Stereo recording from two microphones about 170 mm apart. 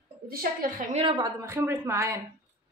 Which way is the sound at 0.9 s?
25° right (ahead or behind).